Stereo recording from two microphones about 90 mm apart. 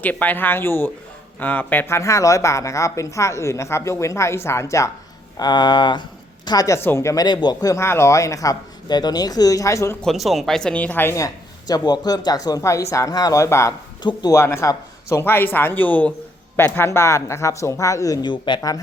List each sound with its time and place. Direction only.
0.0 s speech: 20° left (ahead or behind)
2.0 s a woman's voice: 35° left (ahead or behind)
5.4 s speech: 50° left (ahead or behind)
6.8 s a woman's voice: 30° left (ahead or behind)
7.3 s speech: 55° left (ahead or behind)
7.7 s a woman's voice: 30° left (ahead or behind)
10.0 s speech: centre (ahead or behind)
10.8 s speech: 20° left (ahead or behind)
11.7 s speech: 50° left (ahead or behind)
14.0 s speech: 55° left (ahead or behind)
14.3 s a woman's voice: 30° left (ahead or behind)
18.3 s speech: 60° left (ahead or behind)